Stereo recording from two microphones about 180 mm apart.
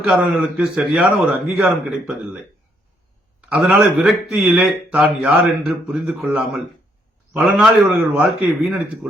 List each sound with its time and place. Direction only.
0.0 s speech: centre (ahead or behind)
3.5 s speech: 5° right (ahead or behind)